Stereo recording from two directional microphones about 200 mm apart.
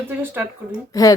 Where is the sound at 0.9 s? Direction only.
15° left (ahead or behind).